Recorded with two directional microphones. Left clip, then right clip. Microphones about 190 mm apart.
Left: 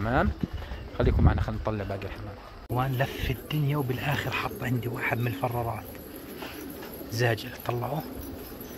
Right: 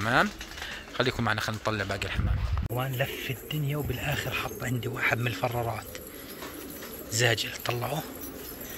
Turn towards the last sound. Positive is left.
turn(degrees=5)  # may be behind; listen again after turning